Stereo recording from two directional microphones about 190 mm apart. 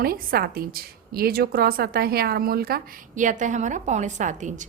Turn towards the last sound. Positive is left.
turn(degrees=-40)  # may be behind; listen again after turning